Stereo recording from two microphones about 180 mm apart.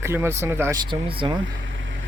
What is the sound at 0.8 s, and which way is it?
Speech, 25° right (ahead or behind).